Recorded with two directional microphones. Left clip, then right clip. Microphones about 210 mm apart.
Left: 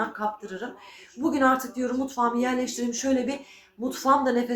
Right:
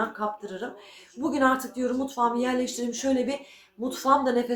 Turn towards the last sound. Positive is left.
turn(degrees=0)  # may be behind; listen again after turning